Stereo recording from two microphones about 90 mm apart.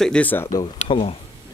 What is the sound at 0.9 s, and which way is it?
Speech, 90° left.